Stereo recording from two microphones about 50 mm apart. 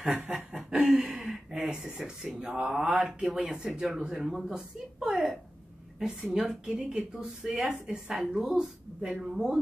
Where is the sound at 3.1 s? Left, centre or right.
Centre.